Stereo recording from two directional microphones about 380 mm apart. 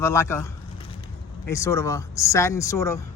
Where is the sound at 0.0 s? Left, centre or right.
Centre.